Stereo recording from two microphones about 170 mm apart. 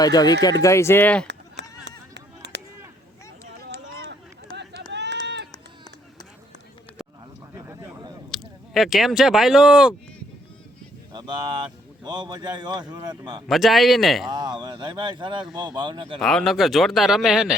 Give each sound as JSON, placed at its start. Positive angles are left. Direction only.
{"t": 0.0, "sound": "speech", "side_deg": 25}
{"t": 1.8, "sound": "a sound", "side_deg": -85}
{"t": 4.9, "sound": "run", "side_deg": -90}
{"t": 7.6, "sound": "a sound", "side_deg": -15}
{"t": 8.3, "sound": "speech", "side_deg": 0}
{"t": 11.1, "sound": "a man's voice", "side_deg": -25}
{"t": 13.5, "sound": "speech", "side_deg": 0}
{"t": 14.3, "sound": "a man's voice", "side_deg": -25}
{"t": 16.1, "sound": "speech", "side_deg": 5}